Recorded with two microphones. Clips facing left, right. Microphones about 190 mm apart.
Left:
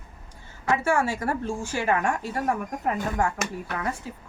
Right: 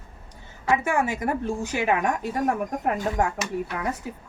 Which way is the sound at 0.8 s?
15° right (ahead or behind).